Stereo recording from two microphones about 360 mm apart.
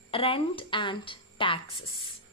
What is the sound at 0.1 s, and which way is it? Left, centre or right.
A woman's voice, centre.